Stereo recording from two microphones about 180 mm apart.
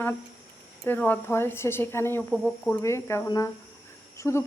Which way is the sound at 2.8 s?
15° left (ahead or behind).